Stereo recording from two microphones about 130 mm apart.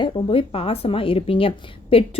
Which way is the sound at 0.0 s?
45° left (ahead or behind).